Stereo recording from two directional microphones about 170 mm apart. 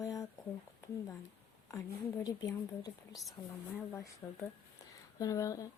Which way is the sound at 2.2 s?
25° left (ahead or behind).